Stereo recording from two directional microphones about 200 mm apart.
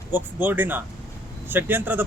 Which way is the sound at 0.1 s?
10° right (ahead or behind).